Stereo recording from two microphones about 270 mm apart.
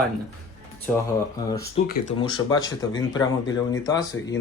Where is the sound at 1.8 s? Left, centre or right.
Left.